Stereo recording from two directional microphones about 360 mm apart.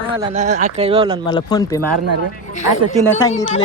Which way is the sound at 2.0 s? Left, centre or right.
Right.